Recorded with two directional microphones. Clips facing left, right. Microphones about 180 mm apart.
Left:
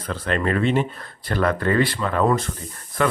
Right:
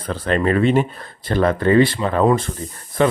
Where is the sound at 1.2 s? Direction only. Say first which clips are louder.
Right 4 dB; 25° right (ahead or behind).